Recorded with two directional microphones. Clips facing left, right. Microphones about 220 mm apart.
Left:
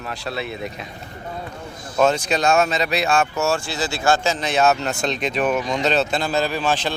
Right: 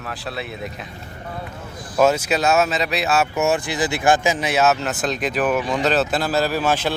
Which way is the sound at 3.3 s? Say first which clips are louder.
Right 2 dB; 20° right (ahead or behind).